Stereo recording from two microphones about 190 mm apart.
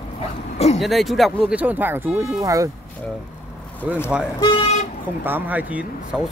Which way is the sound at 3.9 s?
5° right (ahead or behind).